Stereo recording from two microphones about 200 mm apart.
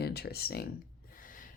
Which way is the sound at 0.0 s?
55° left (ahead or behind).